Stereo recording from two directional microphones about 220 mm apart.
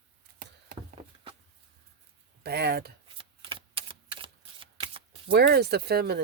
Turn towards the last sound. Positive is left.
turn(degrees=-45)  # may be behind; listen again after turning